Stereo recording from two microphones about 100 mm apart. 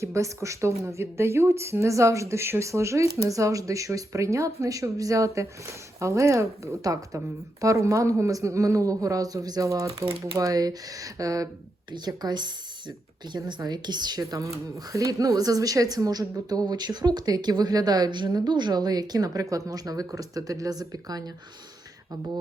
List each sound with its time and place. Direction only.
0.0 s a woman's voice: 30° right (ahead or behind)
11.9 s a woman's voice: 45° right (ahead or behind)